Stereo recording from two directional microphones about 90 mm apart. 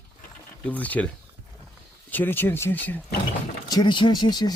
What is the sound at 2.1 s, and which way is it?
Speech, 20° left (ahead or behind).